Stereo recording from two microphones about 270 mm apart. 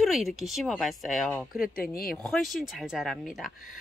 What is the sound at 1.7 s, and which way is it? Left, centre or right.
Speech, left.